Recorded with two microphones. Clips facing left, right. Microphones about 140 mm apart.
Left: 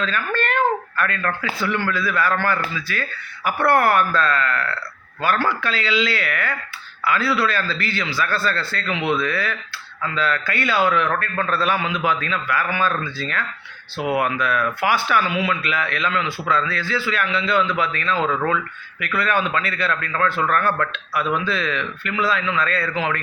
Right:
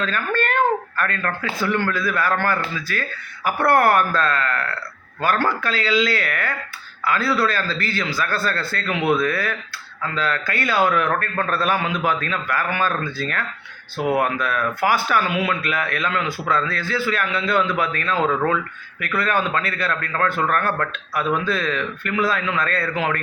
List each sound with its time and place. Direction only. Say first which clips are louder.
0.0 s speech: right 1 dB; 45° right (ahead or behind)